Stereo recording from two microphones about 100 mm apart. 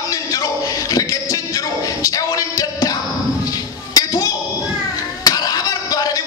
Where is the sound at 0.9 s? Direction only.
35° left (ahead or behind).